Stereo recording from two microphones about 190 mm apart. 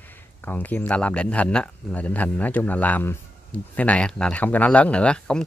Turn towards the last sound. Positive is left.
turn(degrees=5)  # may be behind; listen again after turning